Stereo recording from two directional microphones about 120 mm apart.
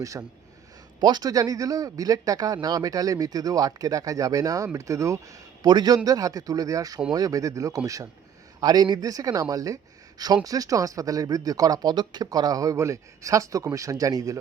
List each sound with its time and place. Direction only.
0.0 s a man's voice: 30° right (ahead or behind)